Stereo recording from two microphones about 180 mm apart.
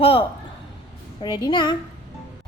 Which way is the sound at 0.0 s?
30° left (ahead or behind).